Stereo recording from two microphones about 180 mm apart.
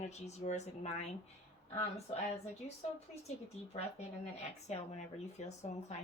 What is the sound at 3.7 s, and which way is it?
Speech, 35° left (ahead or behind).